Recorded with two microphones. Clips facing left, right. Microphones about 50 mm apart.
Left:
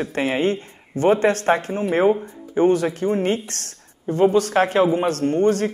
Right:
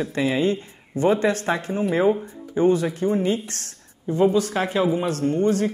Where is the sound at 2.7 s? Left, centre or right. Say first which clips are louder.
Left 1 dB; left.